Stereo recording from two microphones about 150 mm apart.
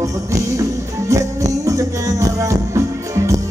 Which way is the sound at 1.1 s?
20° right (ahead or behind).